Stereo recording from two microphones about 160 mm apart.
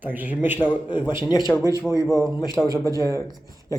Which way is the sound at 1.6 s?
20° left (ahead or behind).